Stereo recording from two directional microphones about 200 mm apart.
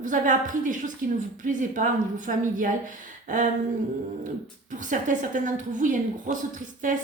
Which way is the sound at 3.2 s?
40° right (ahead or behind).